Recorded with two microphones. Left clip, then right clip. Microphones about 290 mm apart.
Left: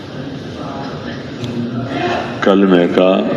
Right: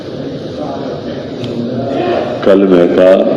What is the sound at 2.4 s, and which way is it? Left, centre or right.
Speech, left.